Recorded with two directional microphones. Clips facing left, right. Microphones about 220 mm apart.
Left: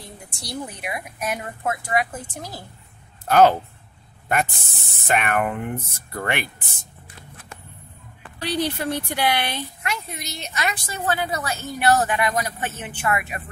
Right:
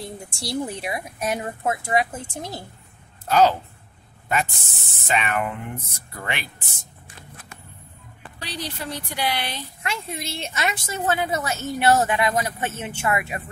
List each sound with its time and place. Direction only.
0.4 s a woman's voice: 30° right (ahead or behind)
3.3 s speech: 55° left (ahead or behind)
8.4 s speech: 55° left (ahead or behind)
9.8 s a woman's voice: 25° right (ahead or behind)